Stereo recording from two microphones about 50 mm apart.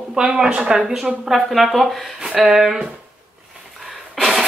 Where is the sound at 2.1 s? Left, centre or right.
Centre.